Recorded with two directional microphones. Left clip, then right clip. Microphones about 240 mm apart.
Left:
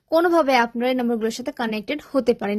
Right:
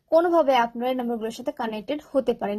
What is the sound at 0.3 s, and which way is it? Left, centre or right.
A woman's voice, left.